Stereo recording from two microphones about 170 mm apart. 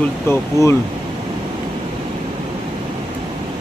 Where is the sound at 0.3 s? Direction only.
15° left (ahead or behind).